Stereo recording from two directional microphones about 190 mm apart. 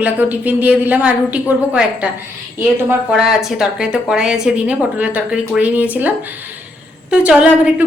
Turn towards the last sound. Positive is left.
turn(degrees=-5)  # may be behind; listen again after turning